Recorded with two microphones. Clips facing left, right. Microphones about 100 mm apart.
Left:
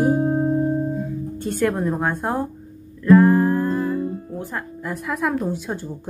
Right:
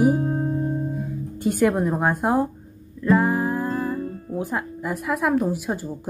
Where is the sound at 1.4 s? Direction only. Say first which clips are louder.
Right 2 dB; 10° right (ahead or behind).